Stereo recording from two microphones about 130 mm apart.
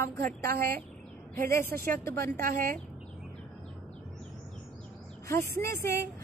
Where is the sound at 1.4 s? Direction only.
20° left (ahead or behind).